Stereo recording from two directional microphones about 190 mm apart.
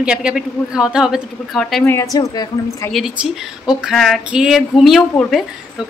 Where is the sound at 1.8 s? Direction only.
15° left (ahead or behind).